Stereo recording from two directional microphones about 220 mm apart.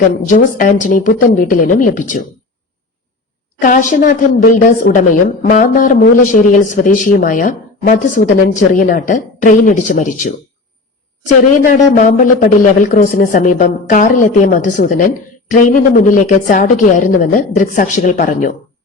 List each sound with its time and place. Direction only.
0.3 s a woman's voice: 40° left (ahead or behind)
3.6 s a woman's voice: 35° left (ahead or behind)
11.6 s a woman's voice: 35° left (ahead or behind)